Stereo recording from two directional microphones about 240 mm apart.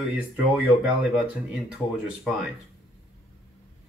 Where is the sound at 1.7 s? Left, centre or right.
Centre.